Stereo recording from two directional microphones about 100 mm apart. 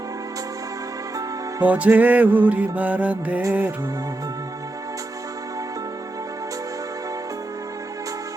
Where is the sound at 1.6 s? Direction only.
15° right (ahead or behind).